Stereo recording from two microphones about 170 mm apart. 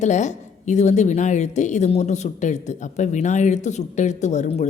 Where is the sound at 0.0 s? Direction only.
45° left (ahead or behind).